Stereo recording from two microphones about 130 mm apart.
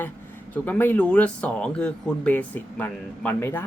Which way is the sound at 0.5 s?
15° left (ahead or behind).